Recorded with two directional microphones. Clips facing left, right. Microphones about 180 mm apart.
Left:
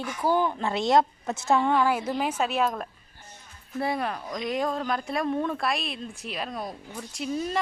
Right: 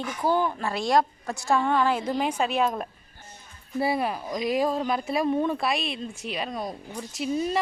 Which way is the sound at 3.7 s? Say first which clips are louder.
Right 3 dB; 5° right (ahead or behind).